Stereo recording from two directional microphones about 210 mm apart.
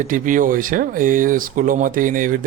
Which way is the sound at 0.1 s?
40° right (ahead or behind).